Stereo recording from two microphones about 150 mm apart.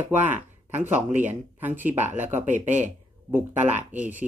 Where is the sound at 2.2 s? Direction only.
55° right (ahead or behind).